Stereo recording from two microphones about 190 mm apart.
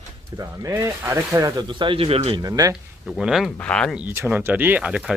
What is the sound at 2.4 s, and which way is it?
Speech, 20° right (ahead or behind).